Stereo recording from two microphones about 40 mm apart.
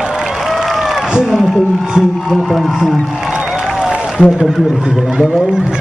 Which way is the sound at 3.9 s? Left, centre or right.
Centre.